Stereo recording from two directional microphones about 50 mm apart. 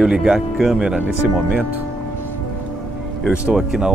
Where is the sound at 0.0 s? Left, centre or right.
Centre.